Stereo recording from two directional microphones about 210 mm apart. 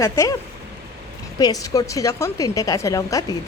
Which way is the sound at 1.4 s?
15° left (ahead or behind).